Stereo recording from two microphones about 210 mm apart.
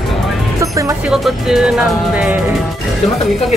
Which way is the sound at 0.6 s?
15° right (ahead or behind).